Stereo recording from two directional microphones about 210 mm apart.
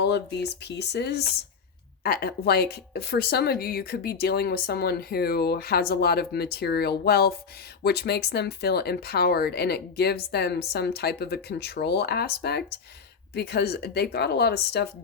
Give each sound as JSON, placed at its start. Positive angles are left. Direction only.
{"t": 0.0, "sound": "speech", "side_deg": 55}